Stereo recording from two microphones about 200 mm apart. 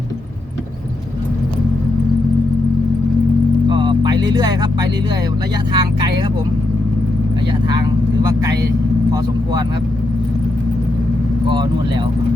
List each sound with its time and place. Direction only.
3.7 s music: 25° right (ahead or behind)
5.7 s vehicle: 20° right (ahead or behind)
7.7 s vehicle: 20° right (ahead or behind)
9.1 s speech: 20° right (ahead or behind)
11.4 s speech: 20° right (ahead or behind)